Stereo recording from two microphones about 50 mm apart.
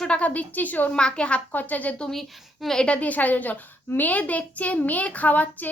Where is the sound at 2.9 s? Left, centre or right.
Left.